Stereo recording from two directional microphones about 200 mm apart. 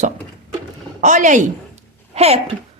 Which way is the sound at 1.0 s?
40° right (ahead or behind).